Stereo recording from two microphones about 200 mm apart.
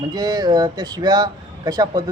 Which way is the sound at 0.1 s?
20° right (ahead or behind).